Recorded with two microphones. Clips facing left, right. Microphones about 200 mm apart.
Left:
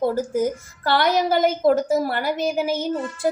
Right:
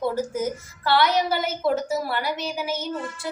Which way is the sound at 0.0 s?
45° left (ahead or behind).